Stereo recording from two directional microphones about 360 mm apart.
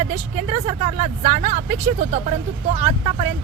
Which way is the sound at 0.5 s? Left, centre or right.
Right.